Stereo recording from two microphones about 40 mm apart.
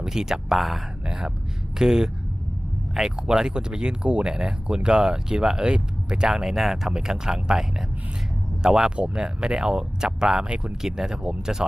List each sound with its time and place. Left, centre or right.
0.0 s speech: centre
0.5 s speech: centre
1.0 s speech: centre
3.2 s speech: centre
10.5 s speech: right
10.8 s speech: centre